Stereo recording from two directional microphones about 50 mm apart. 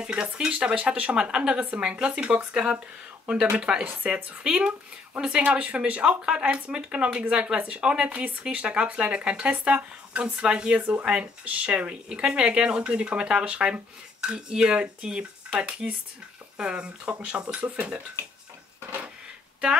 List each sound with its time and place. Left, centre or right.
0.0 s speech: centre